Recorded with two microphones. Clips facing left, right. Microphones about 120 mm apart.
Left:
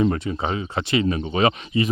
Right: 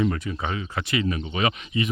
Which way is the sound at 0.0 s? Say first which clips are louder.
Left 4 dB; 30° left (ahead or behind).